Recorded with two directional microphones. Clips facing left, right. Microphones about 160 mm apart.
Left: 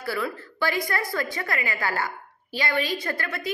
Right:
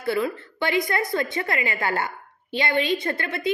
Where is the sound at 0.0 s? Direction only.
25° right (ahead or behind).